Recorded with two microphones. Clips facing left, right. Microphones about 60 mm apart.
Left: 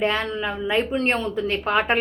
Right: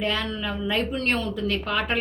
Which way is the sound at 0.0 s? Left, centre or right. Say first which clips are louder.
Left 4 dB; left.